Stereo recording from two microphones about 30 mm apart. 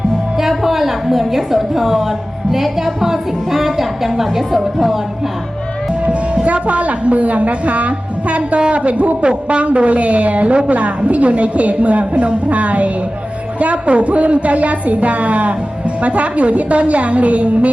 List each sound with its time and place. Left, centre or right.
0.3 s a woman's voice: centre
6.1 s a woman's voice: right